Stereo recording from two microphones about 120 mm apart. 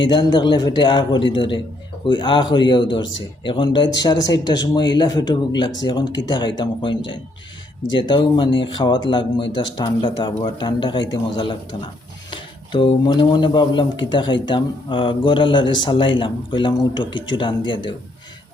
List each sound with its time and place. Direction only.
0.1 s speech: 40° left (ahead or behind)